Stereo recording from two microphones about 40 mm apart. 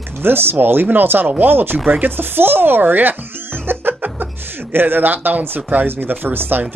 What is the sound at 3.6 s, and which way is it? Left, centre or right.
Chuckle, right.